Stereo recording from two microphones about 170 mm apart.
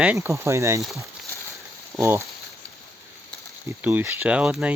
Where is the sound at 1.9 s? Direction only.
15° right (ahead or behind).